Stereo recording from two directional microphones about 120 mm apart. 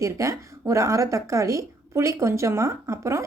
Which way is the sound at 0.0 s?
25° right (ahead or behind).